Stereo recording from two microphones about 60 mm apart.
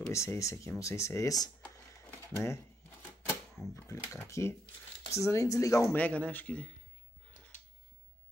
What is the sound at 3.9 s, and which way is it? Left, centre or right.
Speech, left.